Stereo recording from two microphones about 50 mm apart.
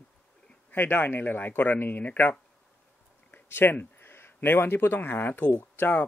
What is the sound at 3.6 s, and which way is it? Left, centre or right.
A man's voice, left.